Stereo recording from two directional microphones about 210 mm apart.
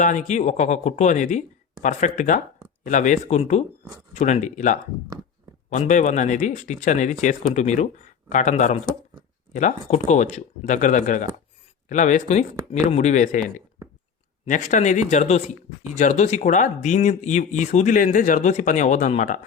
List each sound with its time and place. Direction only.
0.0 s speech: 35° left (ahead or behind)
14.4 s speech: 35° left (ahead or behind)